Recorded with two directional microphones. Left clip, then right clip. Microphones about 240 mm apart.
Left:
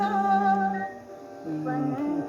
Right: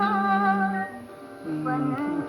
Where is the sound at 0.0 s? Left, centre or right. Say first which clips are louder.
Even; centre.